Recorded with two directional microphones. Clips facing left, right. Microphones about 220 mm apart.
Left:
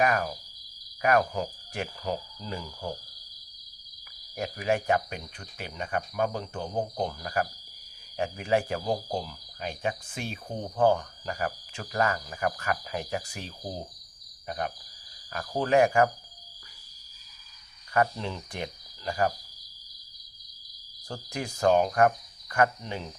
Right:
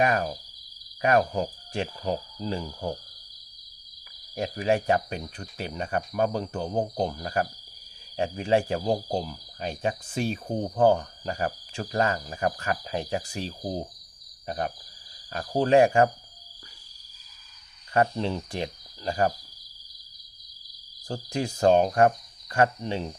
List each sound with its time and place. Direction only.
0.0 s speech: 25° right (ahead or behind)
4.4 s speech: 30° right (ahead or behind)
17.9 s cricket: 30° right (ahead or behind)
21.1 s speech: 30° right (ahead or behind)